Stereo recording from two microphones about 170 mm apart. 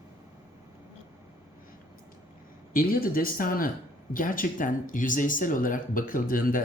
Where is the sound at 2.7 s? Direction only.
60° left (ahead or behind).